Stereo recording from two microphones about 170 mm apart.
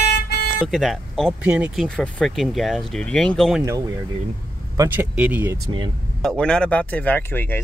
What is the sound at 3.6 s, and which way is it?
Speech, 20° right (ahead or behind).